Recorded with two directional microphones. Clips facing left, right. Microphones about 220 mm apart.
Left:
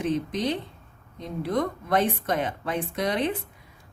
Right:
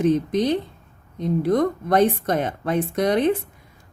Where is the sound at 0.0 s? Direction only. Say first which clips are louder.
Right 7 dB; 45° right (ahead or behind).